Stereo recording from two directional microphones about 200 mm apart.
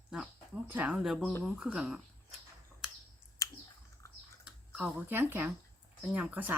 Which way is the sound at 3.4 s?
15° left (ahead or behind).